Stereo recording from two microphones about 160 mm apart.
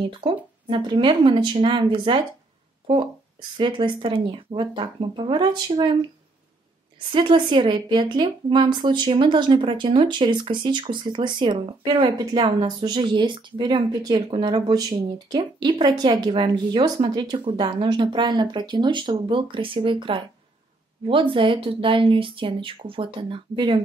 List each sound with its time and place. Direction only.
0.0 s speech: 35° right (ahead or behind)
7.1 s a woman's voice: 30° right (ahead or behind)